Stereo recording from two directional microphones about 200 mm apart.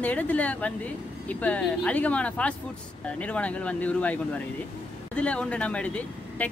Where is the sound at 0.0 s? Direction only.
10° left (ahead or behind).